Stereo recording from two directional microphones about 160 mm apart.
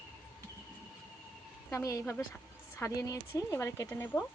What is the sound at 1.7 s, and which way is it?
Speech, 20° left (ahead or behind).